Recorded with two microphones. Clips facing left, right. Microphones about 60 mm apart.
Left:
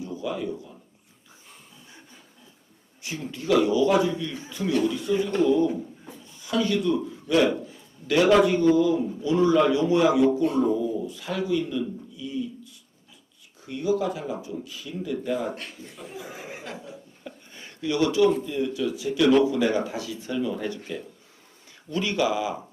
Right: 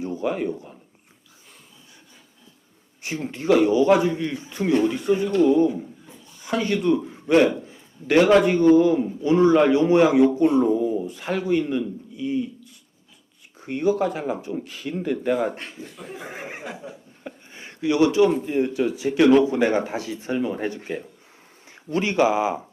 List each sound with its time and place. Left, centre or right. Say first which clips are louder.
0.0 s a sound: right 5 dB; right
3.0 s a man's voice: right 5 dB; right
6.4 s a man's voice: right 2 dB; right
10.8 s a man's voice: right 4 dB; right
15.5 s a man's voice: right 3 dB; right
16.0 s speech: right 3 dB; right
16.9 s a sound: right 2 dB; right
18.4 s a man's voice: right 4 dB; right